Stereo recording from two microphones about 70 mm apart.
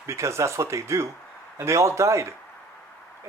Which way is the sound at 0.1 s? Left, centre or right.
Right.